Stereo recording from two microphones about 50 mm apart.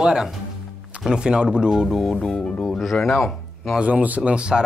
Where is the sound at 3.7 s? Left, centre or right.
Right.